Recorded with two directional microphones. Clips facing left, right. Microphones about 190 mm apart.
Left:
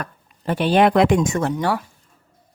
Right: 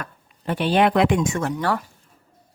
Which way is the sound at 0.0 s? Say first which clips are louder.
Left 4 dB; 45° left (ahead or behind).